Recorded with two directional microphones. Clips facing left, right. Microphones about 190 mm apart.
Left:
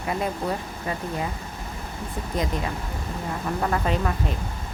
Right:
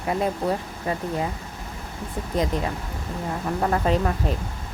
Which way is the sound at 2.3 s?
35° right (ahead or behind).